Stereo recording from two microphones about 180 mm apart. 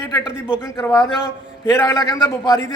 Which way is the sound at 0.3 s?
5° right (ahead or behind).